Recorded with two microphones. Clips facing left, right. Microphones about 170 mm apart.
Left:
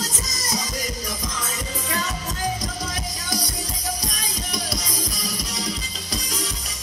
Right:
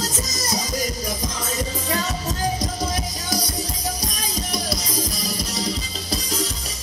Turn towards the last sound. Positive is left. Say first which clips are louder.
# right 4 dB
turn(degrees=-30)  # may be behind; listen again after turning